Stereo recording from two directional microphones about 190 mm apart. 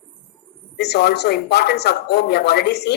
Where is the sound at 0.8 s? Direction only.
60° left (ahead or behind).